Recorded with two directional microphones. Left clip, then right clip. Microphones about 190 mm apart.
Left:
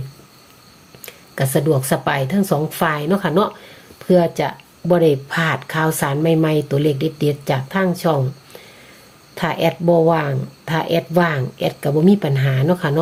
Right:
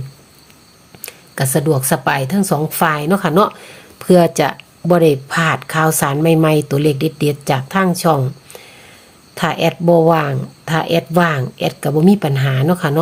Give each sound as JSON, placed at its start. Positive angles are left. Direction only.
{"t": 1.0, "sound": "speech", "side_deg": -20}